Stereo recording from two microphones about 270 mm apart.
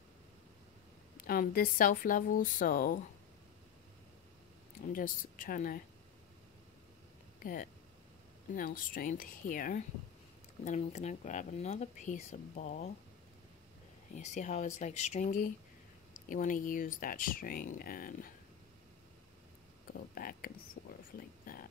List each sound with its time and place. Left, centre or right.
1.2 s speech: left
4.8 s speech: left
8.5 s speech: left
14.1 s speech: left
19.9 s speech: left
21.2 s a sound: left